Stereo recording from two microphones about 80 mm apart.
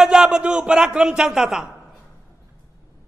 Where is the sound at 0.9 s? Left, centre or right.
Centre.